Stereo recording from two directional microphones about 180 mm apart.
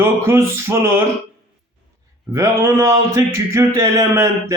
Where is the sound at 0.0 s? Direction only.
15° right (ahead or behind).